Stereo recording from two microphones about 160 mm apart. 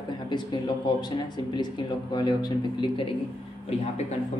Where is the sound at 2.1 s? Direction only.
30° left (ahead or behind).